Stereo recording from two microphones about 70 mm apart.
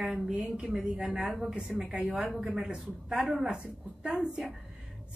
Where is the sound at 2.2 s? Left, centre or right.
Centre.